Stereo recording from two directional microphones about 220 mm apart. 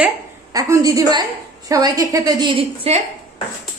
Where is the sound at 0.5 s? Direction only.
15° right (ahead or behind).